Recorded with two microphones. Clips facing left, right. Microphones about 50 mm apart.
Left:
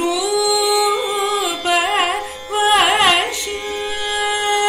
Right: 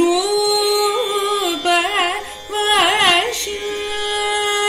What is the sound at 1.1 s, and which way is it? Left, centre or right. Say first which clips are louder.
Music: even; left.